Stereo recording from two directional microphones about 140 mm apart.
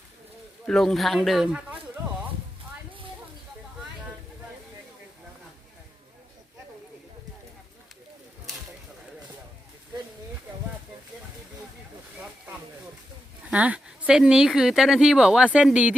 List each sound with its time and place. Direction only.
0.7 s speech: 5° left (ahead or behind)
13.5 s speech: 10° right (ahead or behind)